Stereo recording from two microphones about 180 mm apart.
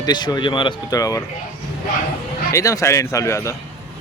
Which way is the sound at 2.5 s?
20° left (ahead or behind).